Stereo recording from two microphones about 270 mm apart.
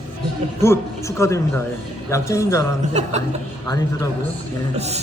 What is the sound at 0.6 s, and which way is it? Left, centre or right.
A man's voice, centre.